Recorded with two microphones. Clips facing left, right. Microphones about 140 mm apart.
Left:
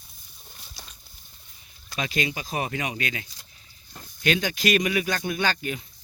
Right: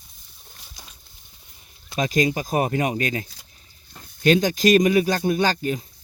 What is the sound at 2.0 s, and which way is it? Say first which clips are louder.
Speech: right 7 dB; 40° right (ahead or behind).